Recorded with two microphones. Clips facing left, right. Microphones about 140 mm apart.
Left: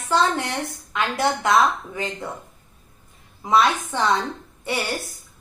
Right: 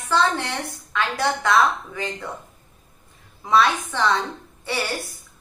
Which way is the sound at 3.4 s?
20° left (ahead or behind).